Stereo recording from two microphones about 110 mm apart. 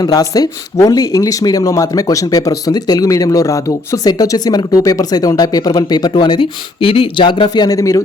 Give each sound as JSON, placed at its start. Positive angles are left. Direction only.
{"t": 0.0, "sound": "speech", "side_deg": 35}